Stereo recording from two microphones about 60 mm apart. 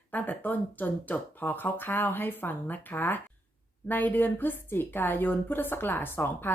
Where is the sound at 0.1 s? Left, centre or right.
Left.